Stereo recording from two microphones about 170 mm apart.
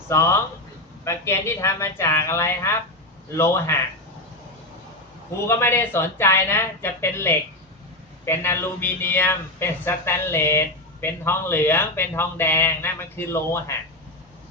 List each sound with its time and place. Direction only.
0.1 s a man's voice: 15° left (ahead or behind)
5.5 s a man's voice: 15° left (ahead or behind)